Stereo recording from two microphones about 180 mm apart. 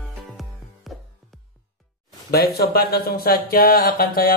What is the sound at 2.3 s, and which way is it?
A man's voice, 60° left (ahead or behind).